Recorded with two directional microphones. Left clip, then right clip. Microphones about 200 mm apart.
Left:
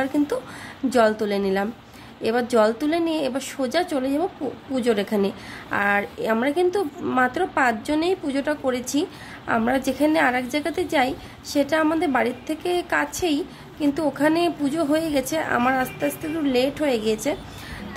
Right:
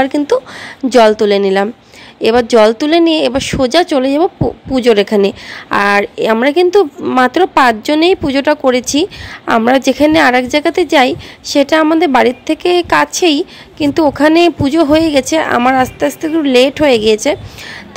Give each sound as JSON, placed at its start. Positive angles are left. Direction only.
{"t": 0.0, "sound": "a woman's voice", "side_deg": -35}